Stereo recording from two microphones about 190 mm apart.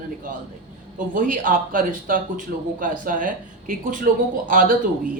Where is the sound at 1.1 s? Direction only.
45° right (ahead or behind).